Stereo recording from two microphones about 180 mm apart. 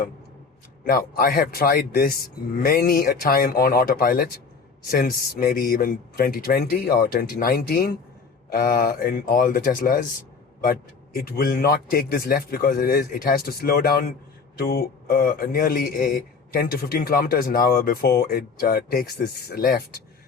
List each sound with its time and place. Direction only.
0.9 s a man's voice: 55° left (ahead or behind)